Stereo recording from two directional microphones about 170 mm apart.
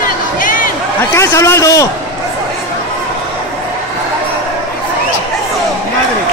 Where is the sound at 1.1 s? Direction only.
15° left (ahead or behind).